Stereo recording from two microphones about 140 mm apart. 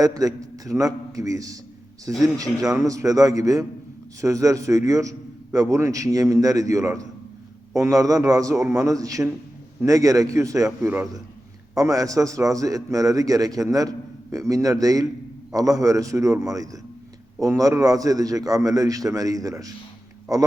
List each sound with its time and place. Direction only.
0.0 s a man's voice: 25° right (ahead or behind)